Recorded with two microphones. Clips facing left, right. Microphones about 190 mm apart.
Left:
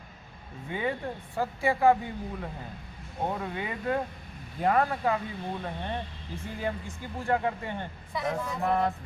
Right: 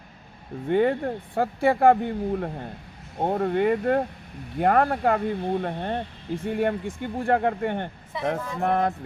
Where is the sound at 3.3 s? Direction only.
50° right (ahead or behind).